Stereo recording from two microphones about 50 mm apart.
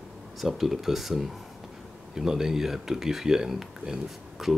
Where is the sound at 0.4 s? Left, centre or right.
Centre.